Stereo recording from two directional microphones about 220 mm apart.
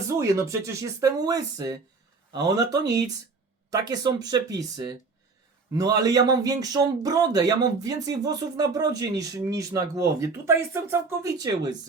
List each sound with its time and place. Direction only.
0.2 s speech: 15° right (ahead or behind)